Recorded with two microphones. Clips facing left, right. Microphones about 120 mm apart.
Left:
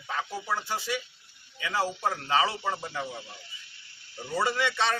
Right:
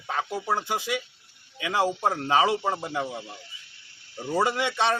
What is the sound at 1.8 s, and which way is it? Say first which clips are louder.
Speech: right 5 dB; 45° right (ahead or behind).